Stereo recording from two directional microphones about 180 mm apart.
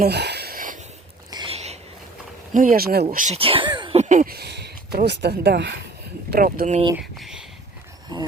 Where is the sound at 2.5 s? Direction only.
50° right (ahead or behind).